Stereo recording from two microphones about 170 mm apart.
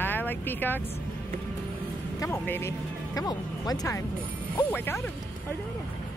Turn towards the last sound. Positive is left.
turn(degrees=10)  # may be behind; listen again after turning